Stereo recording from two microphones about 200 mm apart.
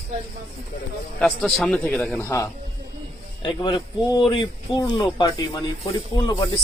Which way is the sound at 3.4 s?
25° left (ahead or behind).